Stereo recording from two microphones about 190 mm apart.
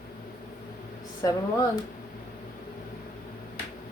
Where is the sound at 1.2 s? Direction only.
20° left (ahead or behind).